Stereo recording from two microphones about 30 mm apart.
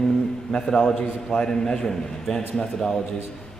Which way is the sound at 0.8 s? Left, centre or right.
Left.